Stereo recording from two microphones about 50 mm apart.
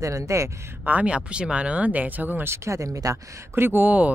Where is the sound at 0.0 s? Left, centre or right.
Right.